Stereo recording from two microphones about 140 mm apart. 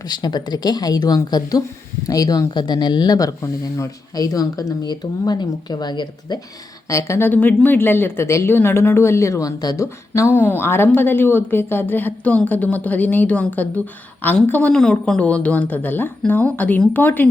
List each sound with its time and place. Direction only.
0.1 s speech: 30° left (ahead or behind)
6.8 s speech: 20° left (ahead or behind)